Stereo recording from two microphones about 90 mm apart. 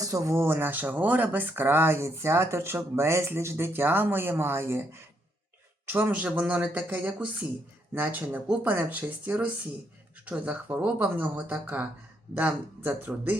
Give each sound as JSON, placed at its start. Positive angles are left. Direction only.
{"t": 0.0, "sound": "speech", "side_deg": -35}